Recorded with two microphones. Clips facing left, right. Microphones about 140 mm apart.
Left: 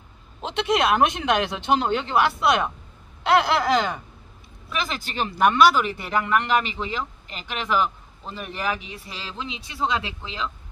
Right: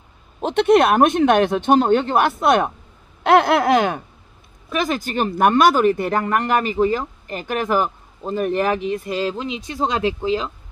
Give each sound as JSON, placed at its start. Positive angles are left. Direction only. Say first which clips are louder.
{"t": 0.4, "sound": "speech", "louder": "right 8 dB", "side_deg": -50}
{"t": 3.3, "sound": "a sound", "louder": "right 5 dB", "side_deg": -50}
{"t": 4.6, "sound": "speech", "louder": "right 8 dB", "side_deg": -45}